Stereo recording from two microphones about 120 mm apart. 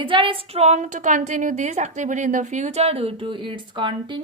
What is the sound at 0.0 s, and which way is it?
A woman's voice, 45° right (ahead or behind).